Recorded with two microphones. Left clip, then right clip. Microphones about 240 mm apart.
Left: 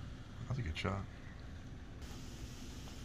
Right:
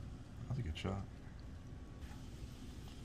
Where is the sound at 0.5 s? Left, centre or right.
Centre.